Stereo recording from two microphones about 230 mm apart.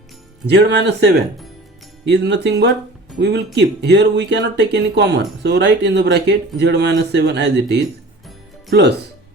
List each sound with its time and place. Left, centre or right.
0.4 s speech: right
2.0 s speech: right